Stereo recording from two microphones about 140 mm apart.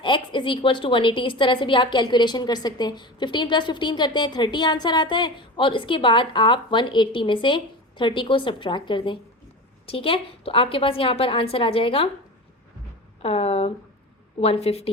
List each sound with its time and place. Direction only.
0.0 s a woman's voice: 35° left (ahead or behind)
13.2 s speech: 45° left (ahead or behind)